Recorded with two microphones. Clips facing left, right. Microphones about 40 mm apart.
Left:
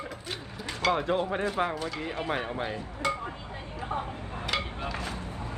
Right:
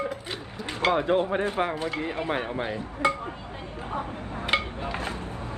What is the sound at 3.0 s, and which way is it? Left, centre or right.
Speech, right.